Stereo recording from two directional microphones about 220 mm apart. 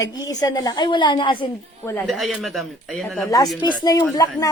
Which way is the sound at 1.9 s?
Centre (ahead or behind).